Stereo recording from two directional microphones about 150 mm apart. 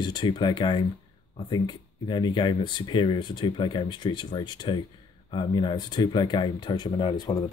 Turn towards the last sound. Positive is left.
turn(degrees=25)  # may be behind; listen again after turning